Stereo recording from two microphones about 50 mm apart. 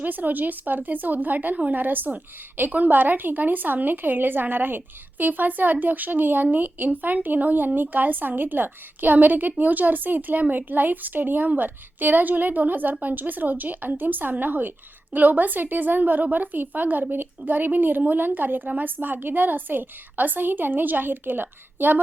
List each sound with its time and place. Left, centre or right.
0.0 s a woman's voice: right